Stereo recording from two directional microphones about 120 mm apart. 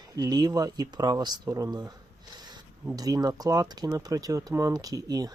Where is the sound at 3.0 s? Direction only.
30° right (ahead or behind).